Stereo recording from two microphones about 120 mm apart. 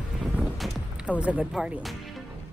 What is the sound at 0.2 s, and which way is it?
Music, centre (ahead or behind).